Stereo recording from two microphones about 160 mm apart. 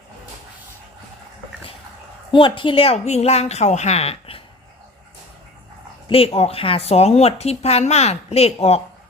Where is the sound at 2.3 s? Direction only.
30° left (ahead or behind).